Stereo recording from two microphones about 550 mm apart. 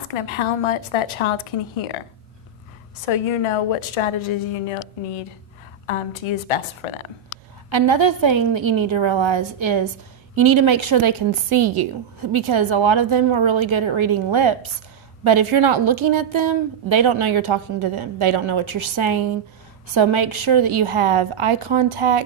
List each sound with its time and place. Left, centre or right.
0.1 s a woman's voice: left
3.1 s a woman's voice: left
5.9 s a woman's voice: left
7.7 s a woman's voice: right